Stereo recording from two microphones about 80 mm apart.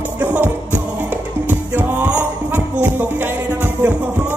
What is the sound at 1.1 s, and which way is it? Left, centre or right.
Music, right.